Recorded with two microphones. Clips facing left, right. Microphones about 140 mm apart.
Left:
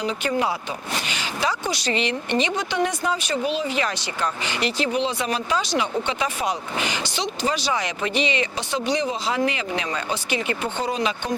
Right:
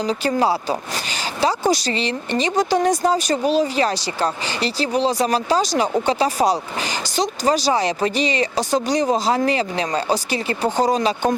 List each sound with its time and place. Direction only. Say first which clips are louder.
0.0 s speech: right 4 dB; 35° right (ahead or behind)